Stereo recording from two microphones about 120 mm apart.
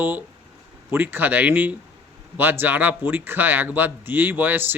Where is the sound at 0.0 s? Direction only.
15° right (ahead or behind).